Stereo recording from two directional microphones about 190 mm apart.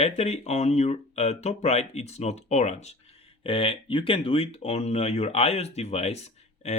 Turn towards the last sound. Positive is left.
turn(degrees=35)  # may be behind; listen again after turning